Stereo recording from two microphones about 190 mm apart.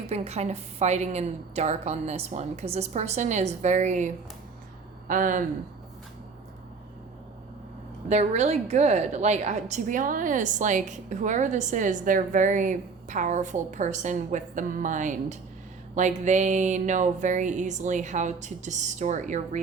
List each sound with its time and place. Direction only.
0.1 s a woman's voice: 35° right (ahead or behind)
8.1 s a woman's voice: 35° right (ahead or behind)